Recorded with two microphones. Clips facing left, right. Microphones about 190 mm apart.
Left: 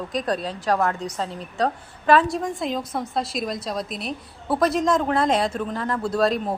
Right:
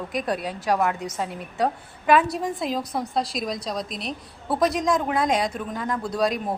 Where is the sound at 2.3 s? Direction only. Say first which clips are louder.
Left 1 dB; 5° right (ahead or behind).